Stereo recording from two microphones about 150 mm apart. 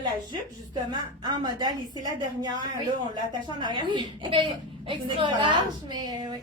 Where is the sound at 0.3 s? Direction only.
30° right (ahead or behind).